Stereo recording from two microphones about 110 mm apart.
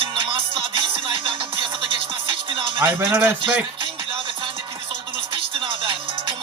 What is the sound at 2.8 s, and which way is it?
Speech, 20° right (ahead or behind).